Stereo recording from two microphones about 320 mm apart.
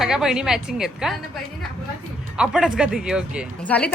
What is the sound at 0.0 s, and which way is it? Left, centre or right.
A woman's voice, centre.